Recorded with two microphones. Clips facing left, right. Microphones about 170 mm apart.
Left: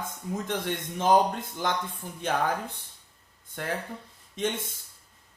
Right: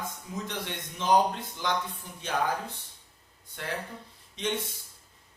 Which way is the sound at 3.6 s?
50° left (ahead or behind).